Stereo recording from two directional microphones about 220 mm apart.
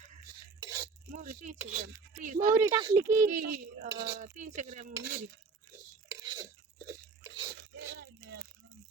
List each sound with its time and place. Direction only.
0.6 s a sound: 15° right (ahead or behind)
1.1 s speech: 35° right (ahead or behind)
1.5 s a child's voice: 5° right (ahead or behind)
1.8 s speech: 35° right (ahead or behind)
2.5 s a child's voice: 15° right (ahead or behind)
3.2 s speech: 40° right (ahead or behind)
3.9 s a sound: 20° right (ahead or behind)
4.2 s speech: 35° right (ahead or behind)
6.1 s crunch: 15° right (ahead or behind)
7.5 s crunch: 55° right (ahead or behind)